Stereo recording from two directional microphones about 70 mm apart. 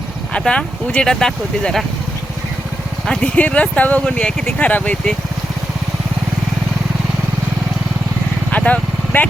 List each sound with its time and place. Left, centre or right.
0.3 s speech: centre
3.3 s speech: centre
8.5 s vehicle: left